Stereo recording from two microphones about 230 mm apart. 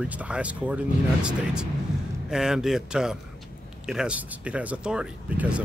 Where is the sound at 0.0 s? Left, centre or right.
Centre.